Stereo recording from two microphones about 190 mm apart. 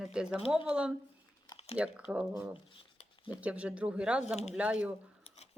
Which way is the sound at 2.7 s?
30° left (ahead or behind).